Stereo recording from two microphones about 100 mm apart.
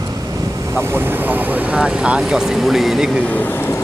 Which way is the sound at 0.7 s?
25° right (ahead or behind).